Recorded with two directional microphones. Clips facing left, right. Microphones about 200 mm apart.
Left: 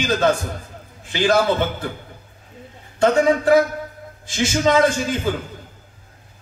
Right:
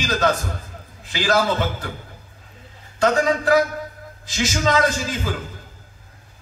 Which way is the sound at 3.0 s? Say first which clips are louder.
Left 3 dB; 25° left (ahead or behind).